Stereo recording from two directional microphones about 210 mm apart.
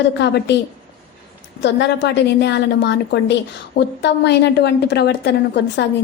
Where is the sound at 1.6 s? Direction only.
55° left (ahead or behind).